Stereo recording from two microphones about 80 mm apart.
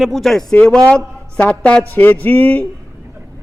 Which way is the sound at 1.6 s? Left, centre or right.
Centre.